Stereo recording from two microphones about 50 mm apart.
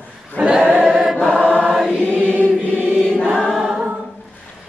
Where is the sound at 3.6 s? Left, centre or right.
Centre.